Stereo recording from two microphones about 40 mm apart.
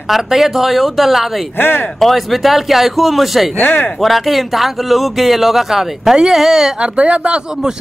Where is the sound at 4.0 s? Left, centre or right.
Centre.